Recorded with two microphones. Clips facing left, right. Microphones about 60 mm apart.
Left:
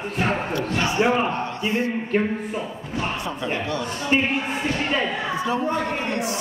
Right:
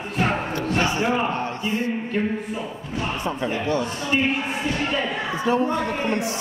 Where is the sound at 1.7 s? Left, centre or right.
Left.